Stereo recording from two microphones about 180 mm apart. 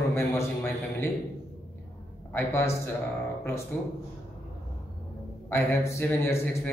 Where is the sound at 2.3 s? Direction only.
15° left (ahead or behind).